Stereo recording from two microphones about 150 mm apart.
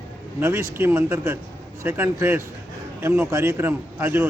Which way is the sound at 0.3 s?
15° right (ahead or behind).